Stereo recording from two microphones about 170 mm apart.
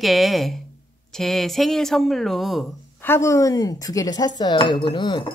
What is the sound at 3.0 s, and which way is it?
Cutlery, 15° left (ahead or behind).